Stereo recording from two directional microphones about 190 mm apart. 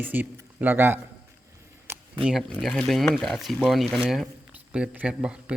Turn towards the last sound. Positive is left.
turn(degrees=-5)  # may be behind; listen again after turning